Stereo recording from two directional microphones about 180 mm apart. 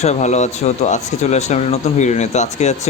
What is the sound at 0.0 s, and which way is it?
Speech, 40° left (ahead or behind).